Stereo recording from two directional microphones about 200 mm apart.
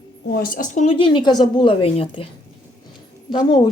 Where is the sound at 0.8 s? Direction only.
25° left (ahead or behind).